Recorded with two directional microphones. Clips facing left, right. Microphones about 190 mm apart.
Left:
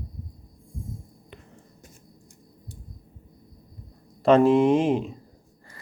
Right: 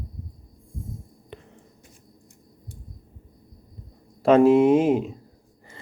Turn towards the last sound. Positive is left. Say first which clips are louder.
# right 2 dB
turn(degrees=-5)  # may be behind; listen again after turning